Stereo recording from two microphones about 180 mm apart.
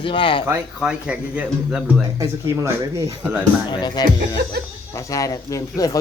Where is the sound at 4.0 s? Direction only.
20° left (ahead or behind).